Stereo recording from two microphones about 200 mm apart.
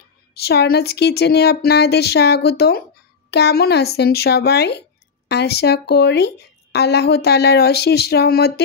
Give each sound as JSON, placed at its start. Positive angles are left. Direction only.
{"t": 0.3, "sound": "speech", "side_deg": 55}